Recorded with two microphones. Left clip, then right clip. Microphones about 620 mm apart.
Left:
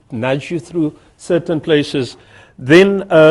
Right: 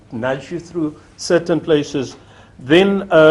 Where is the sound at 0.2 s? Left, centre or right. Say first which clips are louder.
Left 3 dB; left.